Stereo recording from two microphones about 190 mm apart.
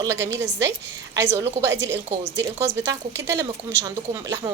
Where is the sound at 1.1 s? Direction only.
15° right (ahead or behind).